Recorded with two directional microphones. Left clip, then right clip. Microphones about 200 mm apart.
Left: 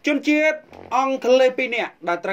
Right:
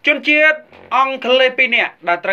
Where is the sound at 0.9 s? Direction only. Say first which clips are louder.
Right 5 dB; 45° left (ahead or behind).